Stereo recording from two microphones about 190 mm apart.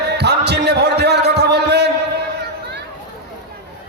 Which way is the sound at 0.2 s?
60° right (ahead or behind).